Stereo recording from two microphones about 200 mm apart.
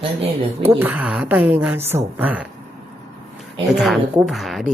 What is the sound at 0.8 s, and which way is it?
A woman's voice, 5° right (ahead or behind).